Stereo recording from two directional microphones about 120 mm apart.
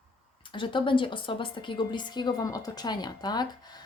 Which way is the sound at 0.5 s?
45° left (ahead or behind).